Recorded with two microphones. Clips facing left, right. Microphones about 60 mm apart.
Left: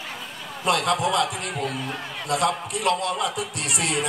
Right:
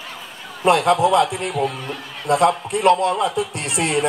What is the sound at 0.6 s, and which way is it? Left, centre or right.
A man's voice, right.